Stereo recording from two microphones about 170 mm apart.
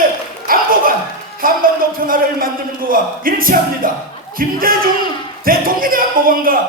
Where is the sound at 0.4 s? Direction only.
60° right (ahead or behind).